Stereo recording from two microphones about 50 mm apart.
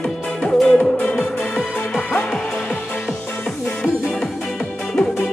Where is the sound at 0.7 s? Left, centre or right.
Left.